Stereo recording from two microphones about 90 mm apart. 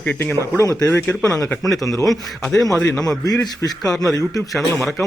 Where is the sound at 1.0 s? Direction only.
10° left (ahead or behind).